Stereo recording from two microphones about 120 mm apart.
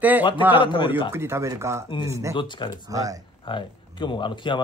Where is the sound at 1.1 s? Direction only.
20° right (ahead or behind).